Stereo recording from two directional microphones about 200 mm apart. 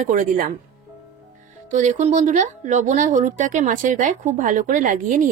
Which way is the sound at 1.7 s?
40° right (ahead or behind).